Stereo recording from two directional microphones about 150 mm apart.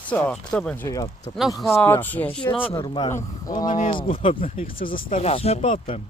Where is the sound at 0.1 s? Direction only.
10° left (ahead or behind).